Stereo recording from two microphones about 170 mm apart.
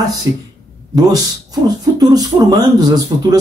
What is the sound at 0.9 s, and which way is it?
Speech, 20° right (ahead or behind).